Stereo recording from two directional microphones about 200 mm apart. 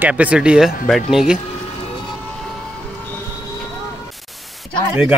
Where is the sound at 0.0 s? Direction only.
5° right (ahead or behind).